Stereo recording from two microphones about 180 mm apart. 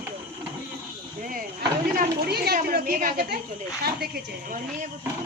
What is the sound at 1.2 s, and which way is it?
Chop, 50° right (ahead or behind).